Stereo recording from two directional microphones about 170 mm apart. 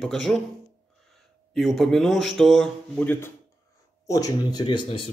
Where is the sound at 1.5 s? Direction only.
Centre (ahead or behind).